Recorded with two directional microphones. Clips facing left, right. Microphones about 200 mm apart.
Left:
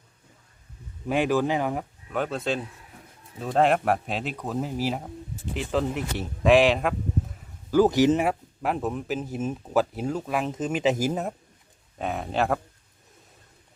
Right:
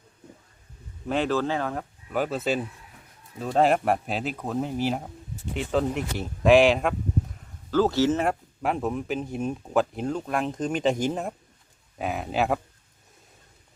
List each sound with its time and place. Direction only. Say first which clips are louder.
1.0 s speech: left 2 dB; 10° left (ahead or behind)
2.1 s speech: right 2 dB; 5° right (ahead or behind)
7.7 s speech: left 3 dB; 15° left (ahead or behind)
8.3 s speech: even; centre (ahead or behind)